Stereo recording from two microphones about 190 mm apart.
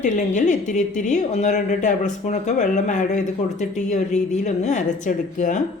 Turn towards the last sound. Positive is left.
turn(degrees=40)  # may be behind; listen again after turning